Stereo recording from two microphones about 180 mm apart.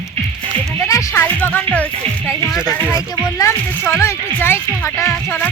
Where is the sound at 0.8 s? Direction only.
20° left (ahead or behind).